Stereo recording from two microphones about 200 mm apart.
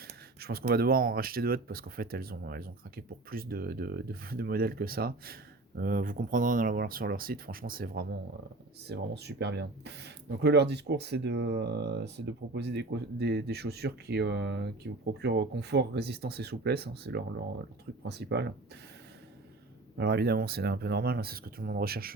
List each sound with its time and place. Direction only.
0.3 s a sound: 50° right (ahead or behind)
0.7 s speech: 50° right (ahead or behind)
20.0 s speech: 55° right (ahead or behind)